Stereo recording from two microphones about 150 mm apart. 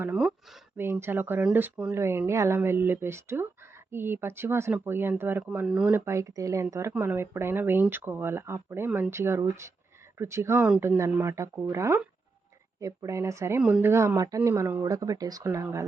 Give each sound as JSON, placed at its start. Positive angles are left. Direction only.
{"t": 0.0, "sound": "speech", "side_deg": -5}
{"t": 13.6, "sound": "speech", "side_deg": -5}